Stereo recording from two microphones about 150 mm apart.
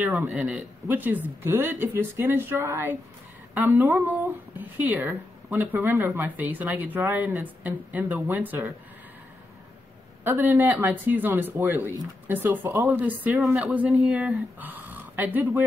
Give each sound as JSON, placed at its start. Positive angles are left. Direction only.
{"t": 0.0, "sound": "speech", "side_deg": -15}
{"t": 0.3, "sound": "speech", "side_deg": -5}
{"t": 10.2, "sound": "speech", "side_deg": -15}